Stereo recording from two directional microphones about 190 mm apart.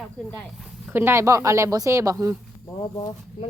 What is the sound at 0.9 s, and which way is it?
Speech, 15° right (ahead or behind).